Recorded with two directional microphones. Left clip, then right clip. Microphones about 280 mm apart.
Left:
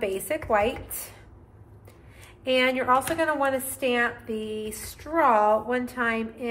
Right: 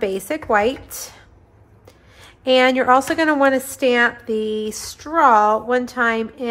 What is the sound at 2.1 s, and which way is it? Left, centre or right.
A woman's voice, centre.